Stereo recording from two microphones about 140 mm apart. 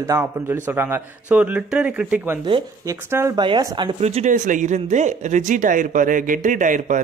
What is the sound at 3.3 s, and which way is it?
Speech, 35° right (ahead or behind).